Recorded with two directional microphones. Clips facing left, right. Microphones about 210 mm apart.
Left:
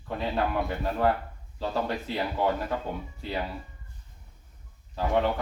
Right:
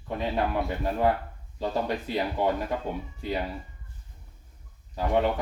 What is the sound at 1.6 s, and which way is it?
Speech, 15° right (ahead or behind).